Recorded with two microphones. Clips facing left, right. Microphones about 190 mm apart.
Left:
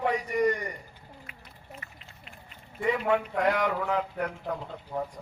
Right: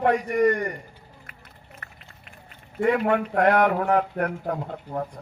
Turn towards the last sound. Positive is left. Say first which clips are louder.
# right 6 dB
turn(degrees=-55)  # may be behind; listen again after turning